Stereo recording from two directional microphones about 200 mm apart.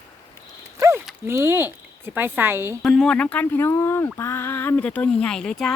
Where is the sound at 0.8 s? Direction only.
15° right (ahead or behind).